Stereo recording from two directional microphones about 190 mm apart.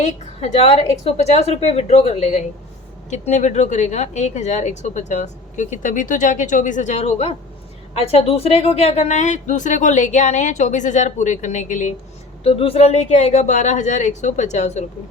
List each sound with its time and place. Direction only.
0.0 s speech: 35° left (ahead or behind)
12.4 s speech: 30° left (ahead or behind)